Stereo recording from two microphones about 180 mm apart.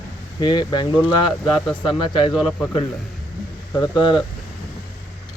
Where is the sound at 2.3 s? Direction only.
Centre (ahead or behind).